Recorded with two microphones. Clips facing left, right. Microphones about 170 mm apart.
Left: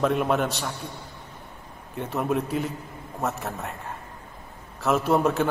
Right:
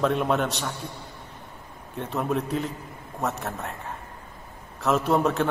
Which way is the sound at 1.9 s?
Centre (ahead or behind).